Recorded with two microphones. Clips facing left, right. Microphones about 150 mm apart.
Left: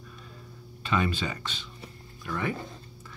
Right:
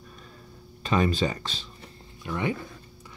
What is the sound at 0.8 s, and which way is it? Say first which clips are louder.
Speech: right 4 dB; 40° right (ahead or behind).